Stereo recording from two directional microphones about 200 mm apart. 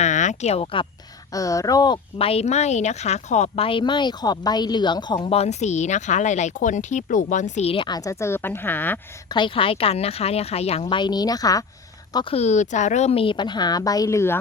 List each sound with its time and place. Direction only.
0.0 s speech: 35° left (ahead or behind)
1.3 s speech: 15° left (ahead or behind)
9.3 s speech: 25° left (ahead or behind)